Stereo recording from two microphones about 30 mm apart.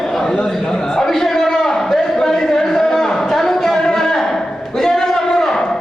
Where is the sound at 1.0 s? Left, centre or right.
Centre.